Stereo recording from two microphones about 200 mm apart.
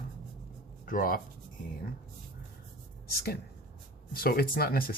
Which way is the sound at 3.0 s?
50° left (ahead or behind).